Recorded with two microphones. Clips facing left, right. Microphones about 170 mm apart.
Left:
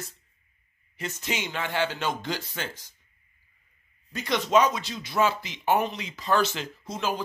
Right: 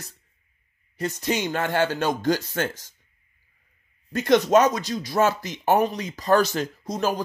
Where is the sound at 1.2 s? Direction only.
40° right (ahead or behind).